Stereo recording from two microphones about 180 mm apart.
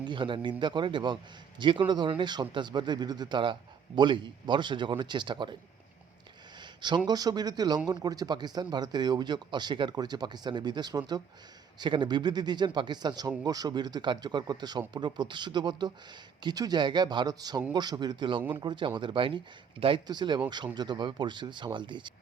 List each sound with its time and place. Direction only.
0.0 s a man's voice: 25° right (ahead or behind)
6.6 s a sound: 25° right (ahead or behind)
7.1 s a man's voice: 20° right (ahead or behind)